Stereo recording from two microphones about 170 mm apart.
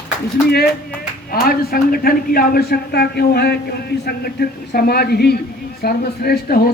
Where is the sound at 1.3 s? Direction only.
60° left (ahead or behind).